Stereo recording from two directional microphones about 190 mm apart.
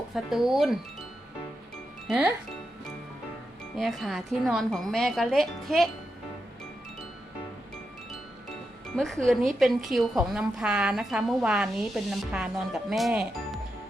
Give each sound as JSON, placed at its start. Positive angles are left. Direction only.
{"t": 0.1, "sound": "a woman's voice", "side_deg": 0}
{"t": 2.0, "sound": "speech", "side_deg": 0}
{"t": 3.8, "sound": "a woman's voice", "side_deg": 0}
{"t": 9.0, "sound": "a woman's voice", "side_deg": 5}